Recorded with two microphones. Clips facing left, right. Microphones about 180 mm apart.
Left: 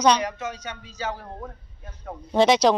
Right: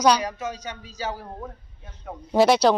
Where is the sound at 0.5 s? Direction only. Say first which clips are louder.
Right 1 dB; 35° right (ahead or behind).